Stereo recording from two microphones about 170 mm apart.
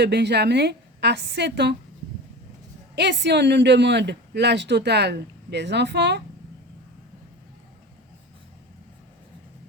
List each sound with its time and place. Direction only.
0.0 s speech: 80° right
2.9 s speech: 90° right